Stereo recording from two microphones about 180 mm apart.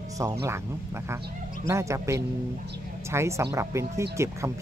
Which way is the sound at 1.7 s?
15° right (ahead or behind).